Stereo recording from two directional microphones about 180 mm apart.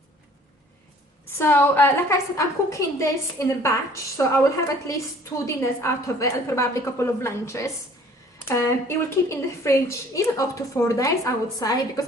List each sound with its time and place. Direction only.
1.4 s a woman's voice: 15° left (ahead or behind)
5.5 s a woman's voice: 15° left (ahead or behind)